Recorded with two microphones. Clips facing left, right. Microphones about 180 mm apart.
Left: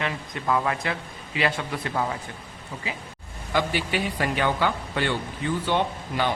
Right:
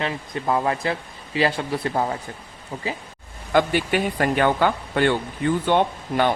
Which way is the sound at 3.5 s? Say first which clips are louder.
Right 6 dB; 50° right (ahead or behind).